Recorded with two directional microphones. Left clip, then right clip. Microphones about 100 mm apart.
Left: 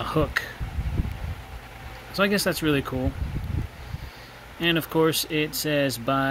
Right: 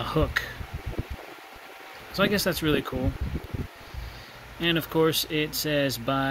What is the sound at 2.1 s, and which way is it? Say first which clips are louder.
Speech: left 2 dB; 15° left (ahead or behind).